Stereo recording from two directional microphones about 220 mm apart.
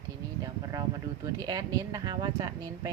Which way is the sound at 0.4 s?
15° right (ahead or behind).